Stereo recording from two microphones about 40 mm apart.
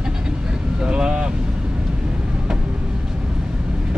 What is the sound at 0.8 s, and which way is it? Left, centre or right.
Vehicle, right.